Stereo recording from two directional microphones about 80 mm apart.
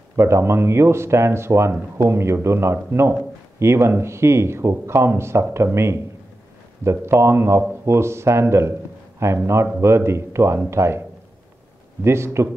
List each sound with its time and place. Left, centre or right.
0.1 s speech: right
12.0 s speech: right